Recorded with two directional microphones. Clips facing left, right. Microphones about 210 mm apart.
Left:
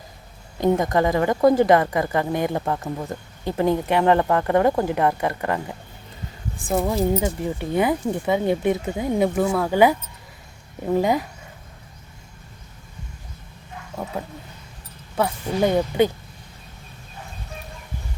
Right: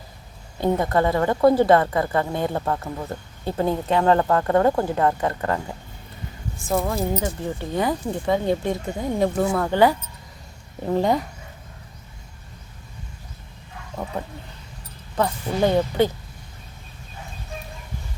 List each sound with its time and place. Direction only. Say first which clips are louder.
0.6 s a woman's voice: left 1 dB; 15° left (ahead or behind)
6.7 s a woman's voice: left 2 dB; 15° left (ahead or behind)
10.9 s a woman's voice: left 1 dB; 5° left (ahead or behind)
14.0 s a woman's voice: even; 5° left (ahead or behind)